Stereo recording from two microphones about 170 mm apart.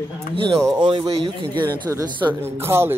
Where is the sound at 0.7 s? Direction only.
30° right (ahead or behind).